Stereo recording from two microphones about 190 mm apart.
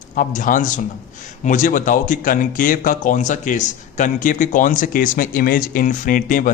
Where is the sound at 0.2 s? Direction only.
45° left (ahead or behind).